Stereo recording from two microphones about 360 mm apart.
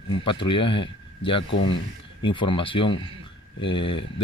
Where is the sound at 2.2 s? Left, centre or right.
Centre.